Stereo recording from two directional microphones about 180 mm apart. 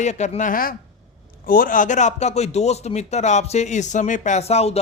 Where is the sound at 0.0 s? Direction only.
40° left (ahead or behind).